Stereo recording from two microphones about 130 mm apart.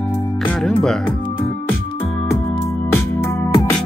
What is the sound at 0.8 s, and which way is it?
Speech, 5° left (ahead or behind).